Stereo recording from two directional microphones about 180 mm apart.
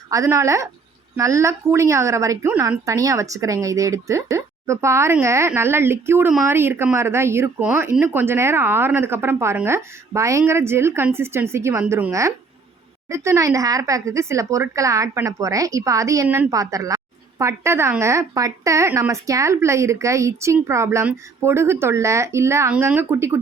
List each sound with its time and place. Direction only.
0.1 s speech: 15° right (ahead or behind)